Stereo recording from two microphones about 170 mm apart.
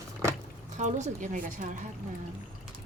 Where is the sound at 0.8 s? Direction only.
45° right (ahead or behind).